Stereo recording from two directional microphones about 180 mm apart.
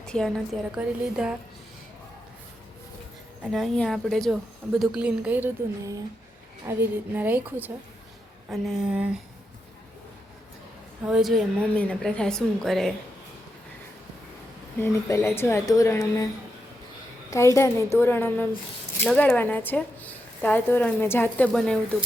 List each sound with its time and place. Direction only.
0.0 s a woman's voice: 5° left (ahead or behind)
3.4 s a woman's voice: centre (ahead or behind)
11.0 s a woman's voice: centre (ahead or behind)
14.8 s speech: 15° left (ahead or behind)
17.3 s speech: 15° left (ahead or behind)